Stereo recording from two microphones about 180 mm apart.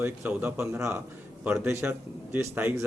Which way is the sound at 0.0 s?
10° right (ahead or behind).